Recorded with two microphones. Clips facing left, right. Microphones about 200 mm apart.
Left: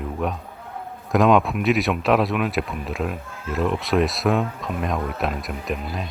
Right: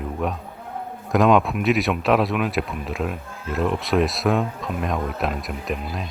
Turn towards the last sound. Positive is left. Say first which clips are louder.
# even
turn(degrees=0)  # may be behind; listen again after turning